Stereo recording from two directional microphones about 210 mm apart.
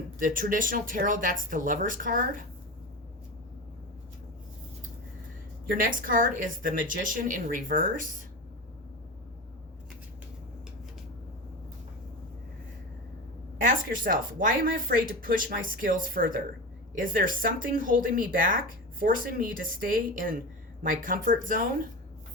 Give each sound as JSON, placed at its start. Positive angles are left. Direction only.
{"t": 0.2, "sound": "speech", "side_deg": -40}
{"t": 5.7, "sound": "speech", "side_deg": -40}
{"t": 13.6, "sound": "speech", "side_deg": -40}